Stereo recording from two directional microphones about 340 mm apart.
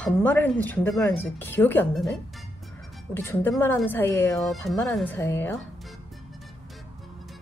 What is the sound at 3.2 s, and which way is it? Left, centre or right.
Speech, centre.